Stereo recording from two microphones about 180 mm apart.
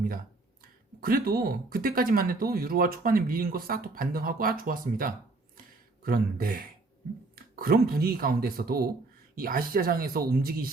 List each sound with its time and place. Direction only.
0.6 s speech: 55° right (ahead or behind)
5.5 s a sound: 55° right (ahead or behind)
7.3 s speech: 55° right (ahead or behind)